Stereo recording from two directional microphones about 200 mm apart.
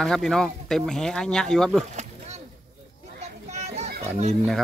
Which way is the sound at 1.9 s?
35° right (ahead or behind).